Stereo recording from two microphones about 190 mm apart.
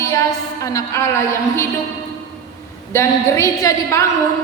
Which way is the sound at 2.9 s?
15° left (ahead or behind).